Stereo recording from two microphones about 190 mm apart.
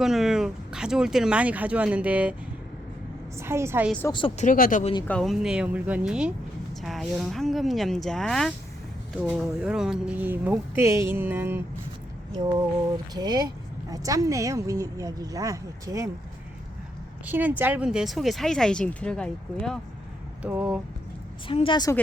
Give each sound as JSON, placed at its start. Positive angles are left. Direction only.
{"t": 0.0, "sound": "speech", "side_deg": 0}
{"t": 3.3, "sound": "speech", "side_deg": -15}
{"t": 4.1, "sound": "a woman's voice", "side_deg": 25}
{"t": 4.4, "sound": "speech", "side_deg": 45}
{"t": 5.0, "sound": "speech", "side_deg": 5}
{"t": 13.1, "sound": "speech", "side_deg": -20}
{"t": 17.2, "sound": "speech", "side_deg": -10}
{"t": 21.4, "sound": "a woman's voice", "side_deg": 30}